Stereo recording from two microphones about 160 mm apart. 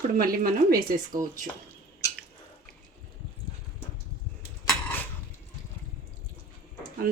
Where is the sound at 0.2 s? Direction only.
65° right (ahead or behind).